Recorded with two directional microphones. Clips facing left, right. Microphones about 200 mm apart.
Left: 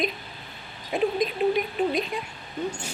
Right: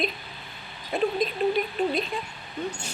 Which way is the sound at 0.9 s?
15° left (ahead or behind).